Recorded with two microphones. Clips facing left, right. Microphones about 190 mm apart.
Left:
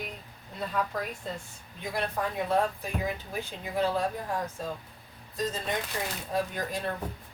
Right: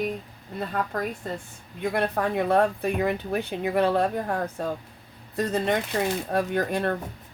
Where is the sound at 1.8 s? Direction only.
65° right (ahead or behind).